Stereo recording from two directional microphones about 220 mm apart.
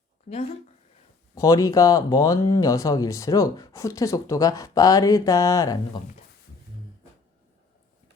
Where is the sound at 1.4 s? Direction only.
15° left (ahead or behind).